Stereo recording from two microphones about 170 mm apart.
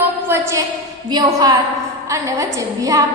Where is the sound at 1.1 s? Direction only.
25° right (ahead or behind).